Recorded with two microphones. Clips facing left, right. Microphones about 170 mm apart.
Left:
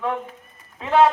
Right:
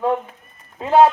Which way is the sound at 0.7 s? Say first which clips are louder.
Right 3 dB; 35° right (ahead or behind).